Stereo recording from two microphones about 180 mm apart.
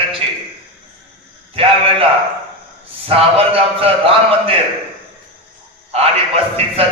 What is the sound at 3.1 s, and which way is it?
Speech, 30° right (ahead or behind).